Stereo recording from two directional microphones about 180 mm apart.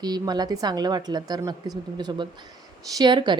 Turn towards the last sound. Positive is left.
turn(degrees=-25)  # may be behind; listen again after turning